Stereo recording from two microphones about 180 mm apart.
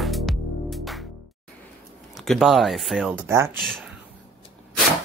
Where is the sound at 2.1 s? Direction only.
Centre (ahead or behind).